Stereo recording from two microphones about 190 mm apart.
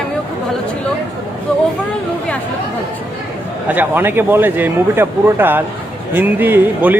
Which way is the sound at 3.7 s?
10° right (ahead or behind).